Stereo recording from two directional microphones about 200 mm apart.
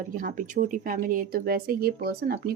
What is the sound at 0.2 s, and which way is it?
Speech, 45° right (ahead or behind).